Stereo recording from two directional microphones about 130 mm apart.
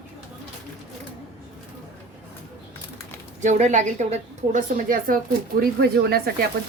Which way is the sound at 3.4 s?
70° right (ahead or behind).